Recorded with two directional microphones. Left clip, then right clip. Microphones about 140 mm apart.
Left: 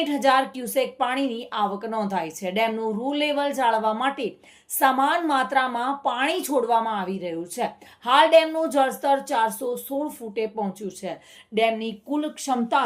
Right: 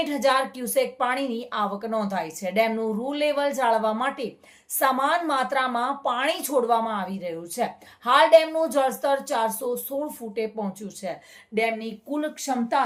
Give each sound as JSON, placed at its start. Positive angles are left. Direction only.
{"t": 0.0, "sound": "a woman's voice", "side_deg": 15}